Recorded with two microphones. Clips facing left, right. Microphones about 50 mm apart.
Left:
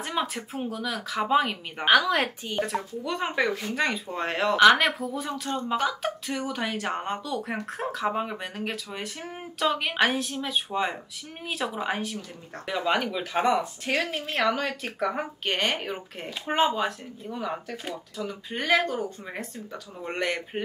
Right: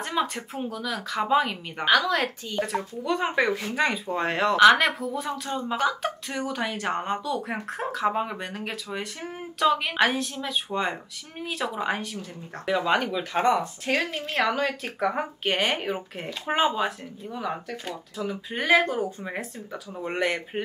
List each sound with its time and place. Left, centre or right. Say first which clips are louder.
0.0 s a sound: right 2 dB; centre
0.5 s speech: even; centre
2.6 s speech: right 1 dB; centre